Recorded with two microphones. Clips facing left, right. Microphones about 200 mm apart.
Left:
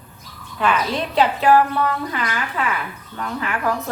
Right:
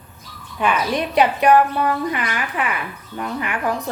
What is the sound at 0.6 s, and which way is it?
A woman's voice, 15° right (ahead or behind).